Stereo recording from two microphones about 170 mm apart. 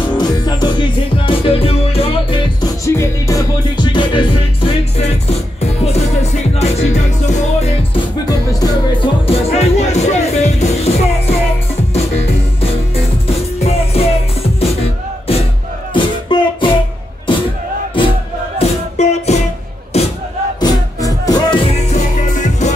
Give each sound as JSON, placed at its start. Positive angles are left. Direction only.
{"t": 0.0, "sound": "music", "side_deg": 25}
{"t": 2.8, "sound": "music", "side_deg": 15}
{"t": 7.9, "sound": "music", "side_deg": 20}
{"t": 9.3, "sound": "music", "side_deg": 40}
{"t": 13.6, "sound": "music", "side_deg": 35}
{"t": 15.9, "sound": "music", "side_deg": 30}
{"t": 18.6, "sound": "music", "side_deg": 40}
{"t": 20.6, "sound": "music", "side_deg": 20}
{"t": 22.4, "sound": "music", "side_deg": 45}